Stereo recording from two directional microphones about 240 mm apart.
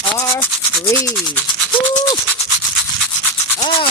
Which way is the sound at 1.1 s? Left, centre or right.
Centre.